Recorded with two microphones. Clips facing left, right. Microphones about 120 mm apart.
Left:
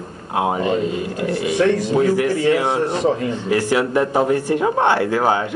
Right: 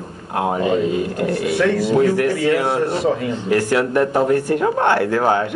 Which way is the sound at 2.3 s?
20° left (ahead or behind).